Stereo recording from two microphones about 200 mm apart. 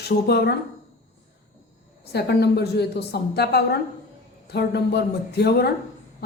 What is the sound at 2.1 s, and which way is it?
Speech, 55° left (ahead or behind).